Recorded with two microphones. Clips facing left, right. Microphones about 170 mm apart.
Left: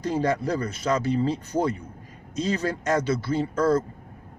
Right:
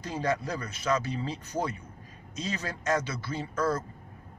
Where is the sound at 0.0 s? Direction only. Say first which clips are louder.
Left 6 dB; 30° left (ahead or behind).